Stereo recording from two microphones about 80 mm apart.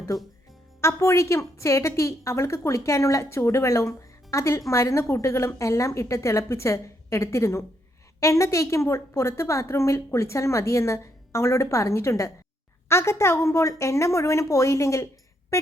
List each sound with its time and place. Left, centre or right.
0.8 s a woman's voice: left